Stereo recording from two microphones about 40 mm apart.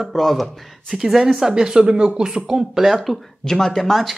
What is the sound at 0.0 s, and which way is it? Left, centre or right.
Speech, centre.